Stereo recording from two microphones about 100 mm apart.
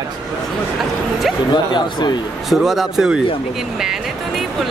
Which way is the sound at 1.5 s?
50° left (ahead or behind).